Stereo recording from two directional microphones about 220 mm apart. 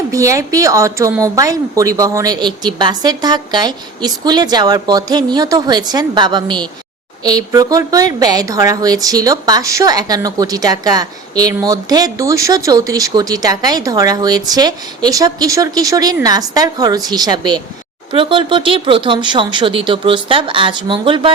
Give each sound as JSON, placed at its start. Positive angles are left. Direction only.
{"t": 0.1, "sound": "a woman's voice", "side_deg": -15}